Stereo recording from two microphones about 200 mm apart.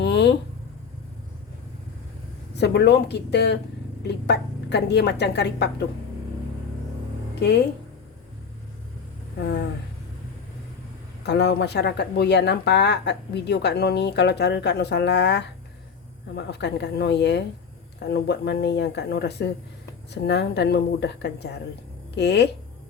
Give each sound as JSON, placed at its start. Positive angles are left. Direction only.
{"t": 0.0, "sound": "a sound", "side_deg": 60}
{"t": 2.6, "sound": "speech", "side_deg": 55}
{"t": 7.3, "sound": "speech", "side_deg": 55}
{"t": 11.3, "sound": "speech", "side_deg": 60}